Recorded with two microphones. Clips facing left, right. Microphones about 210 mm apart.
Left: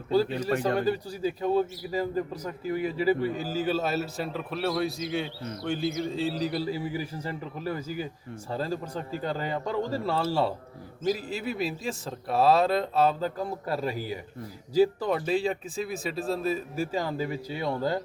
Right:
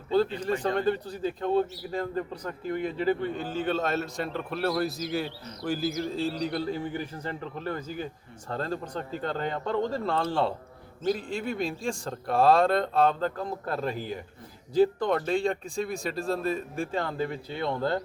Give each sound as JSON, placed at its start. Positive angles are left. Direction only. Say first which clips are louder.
{"t": 0.1, "sound": "a man's voice", "louder": "even", "side_deg": 10}